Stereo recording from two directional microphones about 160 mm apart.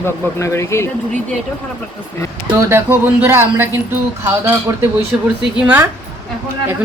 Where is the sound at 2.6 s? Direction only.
15° right (ahead or behind).